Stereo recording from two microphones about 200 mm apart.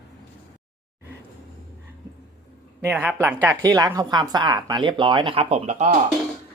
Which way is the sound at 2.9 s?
5° right (ahead or behind).